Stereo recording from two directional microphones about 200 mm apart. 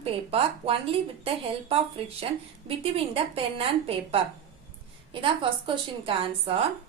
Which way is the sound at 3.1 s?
30° right (ahead or behind).